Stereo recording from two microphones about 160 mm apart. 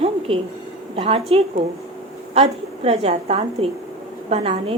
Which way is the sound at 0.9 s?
40° right (ahead or behind).